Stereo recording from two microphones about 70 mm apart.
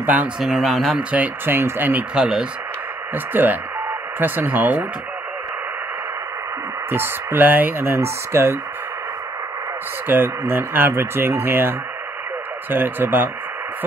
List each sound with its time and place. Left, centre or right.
0.0 s speech: right
0.4 s speech: centre
0.9 s speech: right
2.1 s speech: centre
3.3 s speech: right
6.9 s speech: right
7.9 s speech: right
10.0 s speech: right